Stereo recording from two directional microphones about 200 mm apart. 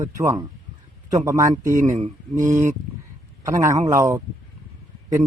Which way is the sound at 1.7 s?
35° right (ahead or behind).